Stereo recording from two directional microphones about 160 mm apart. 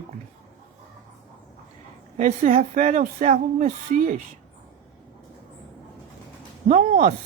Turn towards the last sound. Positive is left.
turn(degrees=-60)  # may be behind; listen again after turning